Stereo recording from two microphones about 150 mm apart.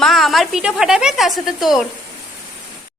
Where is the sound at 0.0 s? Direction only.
Centre (ahead or behind).